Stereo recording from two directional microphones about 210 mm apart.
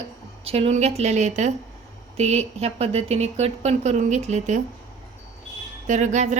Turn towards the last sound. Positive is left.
turn(degrees=-35)  # may be behind; listen again after turning